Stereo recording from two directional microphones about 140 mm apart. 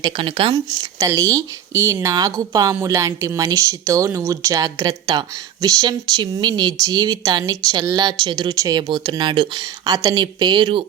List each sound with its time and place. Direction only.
0.0 s speech: 40° right (ahead or behind)
0.5 s speech: 25° right (ahead or behind)